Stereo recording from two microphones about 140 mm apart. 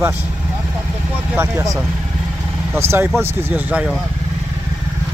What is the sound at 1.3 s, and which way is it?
Speech, 15° right (ahead or behind).